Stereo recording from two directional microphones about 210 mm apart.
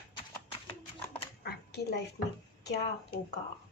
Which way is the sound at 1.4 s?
50° left (ahead or behind).